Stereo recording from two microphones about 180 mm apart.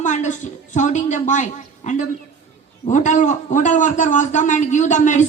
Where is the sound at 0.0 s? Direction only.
40° left (ahead or behind).